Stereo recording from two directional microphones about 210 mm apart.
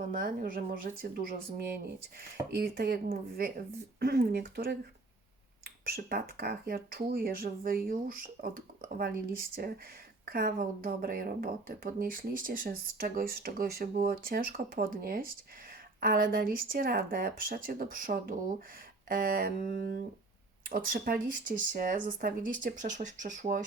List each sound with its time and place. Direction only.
0.1 s speech: 40° right (ahead or behind)